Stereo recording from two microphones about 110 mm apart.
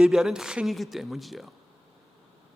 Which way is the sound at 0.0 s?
5° right (ahead or behind).